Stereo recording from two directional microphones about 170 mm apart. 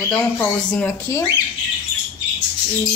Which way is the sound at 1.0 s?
20° left (ahead or behind).